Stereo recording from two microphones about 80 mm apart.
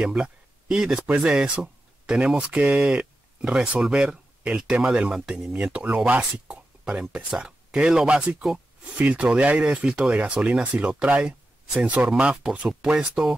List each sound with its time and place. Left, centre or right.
0.0 s speech: centre